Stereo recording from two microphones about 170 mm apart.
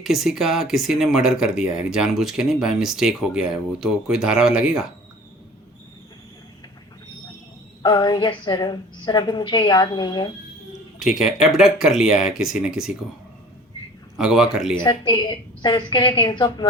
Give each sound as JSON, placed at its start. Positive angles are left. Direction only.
{"t": 0.0, "sound": "speech", "side_deg": 0}
{"t": 7.8, "sound": "a woman's voice", "side_deg": 25}
{"t": 11.0, "sound": "speech", "side_deg": -5}
{"t": 14.2, "sound": "speech", "side_deg": -5}
{"t": 14.8, "sound": "a woman's voice", "side_deg": 25}